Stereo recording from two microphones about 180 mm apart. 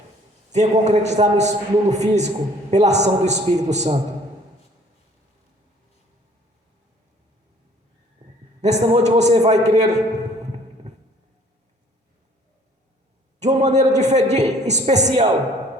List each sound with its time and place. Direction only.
0.5 s a man's voice: 40° right (ahead or behind)
8.6 s a man's voice: 35° right (ahead or behind)
13.4 s a man's voice: 40° right (ahead or behind)